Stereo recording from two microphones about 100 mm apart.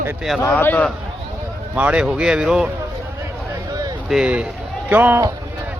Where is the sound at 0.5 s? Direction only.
20° left (ahead or behind).